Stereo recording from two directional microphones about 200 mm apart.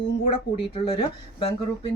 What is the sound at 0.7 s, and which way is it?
Speech, 30° left (ahead or behind).